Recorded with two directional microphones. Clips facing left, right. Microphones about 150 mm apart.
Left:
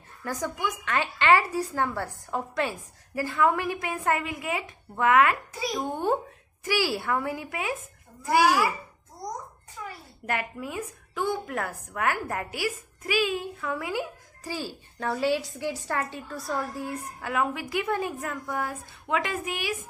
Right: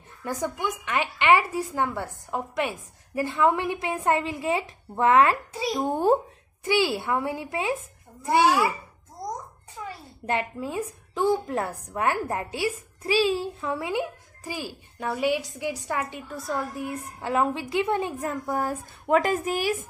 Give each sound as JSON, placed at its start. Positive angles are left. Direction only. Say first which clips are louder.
{"t": 0.2, "sound": "a woman's voice", "louder": "right 2 dB", "side_deg": -20}
{"t": 6.6, "sound": "a woman's voice", "louder": "right 3 dB", "side_deg": -20}
{"t": 9.8, "sound": "a sound", "louder": "right 2 dB", "side_deg": -25}
{"t": 10.2, "sound": "a woman's voice", "louder": "right 3 dB", "side_deg": -25}